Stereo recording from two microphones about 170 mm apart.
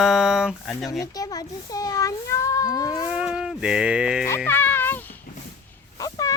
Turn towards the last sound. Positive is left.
turn(degrees=20)  # may be behind; listen again after turning